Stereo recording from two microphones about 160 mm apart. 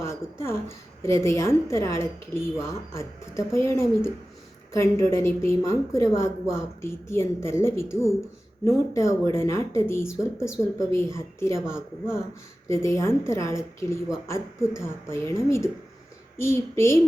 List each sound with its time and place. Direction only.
0.0 s speech: 15° left (ahead or behind)